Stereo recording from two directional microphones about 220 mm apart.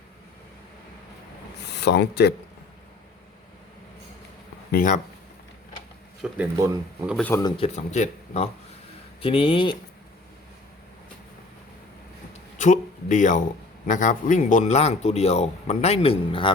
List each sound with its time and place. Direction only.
1.7 s speech: 50° left (ahead or behind)
4.7 s speech: 40° left (ahead or behind)
6.3 s speech: 5° right (ahead or behind)
7.1 s speech: 5° left (ahead or behind)
7.5 s a man's voice: 30° left (ahead or behind)
12.5 s a man's voice: 35° left (ahead or behind)